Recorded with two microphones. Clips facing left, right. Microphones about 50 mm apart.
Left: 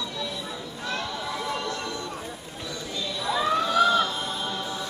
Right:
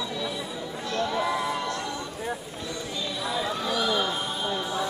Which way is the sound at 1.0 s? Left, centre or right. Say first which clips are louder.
Right 5 dB; right.